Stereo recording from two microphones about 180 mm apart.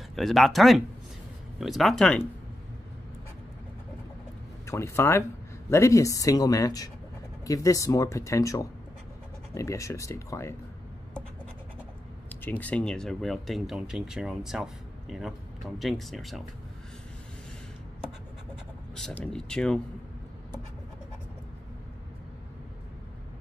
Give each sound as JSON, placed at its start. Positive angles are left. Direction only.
{"t": 0.1, "sound": "speech", "side_deg": 0}
{"t": 4.6, "sound": "speech", "side_deg": 15}
{"t": 12.4, "sound": "speech", "side_deg": 10}
{"t": 18.9, "sound": "speech", "side_deg": 5}